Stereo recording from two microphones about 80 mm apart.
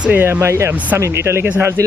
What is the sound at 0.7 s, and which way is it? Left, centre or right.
Speech, centre.